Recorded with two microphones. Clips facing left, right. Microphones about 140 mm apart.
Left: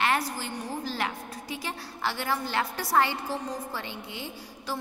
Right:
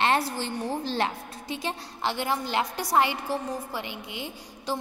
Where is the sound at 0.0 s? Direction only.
30° right (ahead or behind).